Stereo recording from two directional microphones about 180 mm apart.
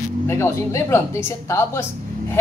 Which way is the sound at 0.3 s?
15° left (ahead or behind).